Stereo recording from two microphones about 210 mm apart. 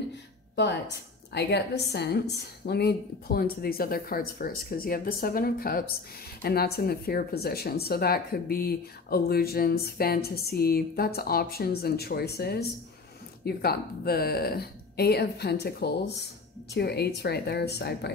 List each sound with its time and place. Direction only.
1.3 s speech: 50° left (ahead or behind)